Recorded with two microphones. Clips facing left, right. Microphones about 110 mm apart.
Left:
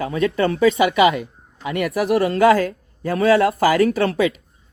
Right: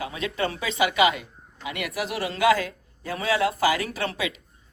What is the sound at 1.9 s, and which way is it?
Speech, 55° left (ahead or behind).